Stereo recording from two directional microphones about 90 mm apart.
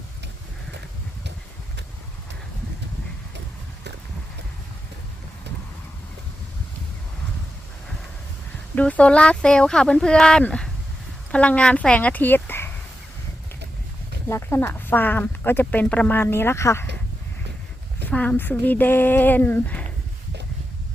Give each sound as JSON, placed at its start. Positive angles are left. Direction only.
{"t": 8.7, "sound": "speech", "side_deg": 15}
{"t": 14.3, "sound": "speech", "side_deg": 30}
{"t": 18.1, "sound": "speech", "side_deg": 15}